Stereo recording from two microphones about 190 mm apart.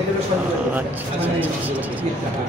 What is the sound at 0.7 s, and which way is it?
Speech, 10° right (ahead or behind).